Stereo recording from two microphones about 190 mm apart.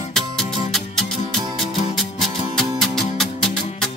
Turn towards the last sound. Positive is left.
turn(degrees=0)  # may be behind; listen again after turning